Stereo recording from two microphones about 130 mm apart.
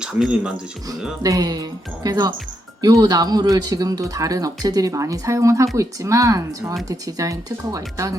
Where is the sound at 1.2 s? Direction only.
30° right (ahead or behind).